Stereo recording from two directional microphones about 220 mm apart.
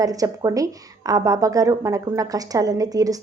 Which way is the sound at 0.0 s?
15° right (ahead or behind).